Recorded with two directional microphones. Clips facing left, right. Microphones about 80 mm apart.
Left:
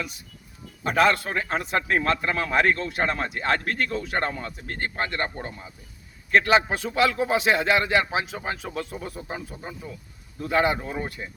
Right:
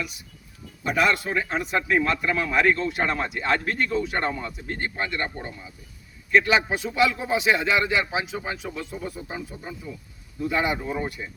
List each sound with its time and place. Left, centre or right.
0.9 s a man's voice: left
9.8 s speech: left
10.9 s speech: left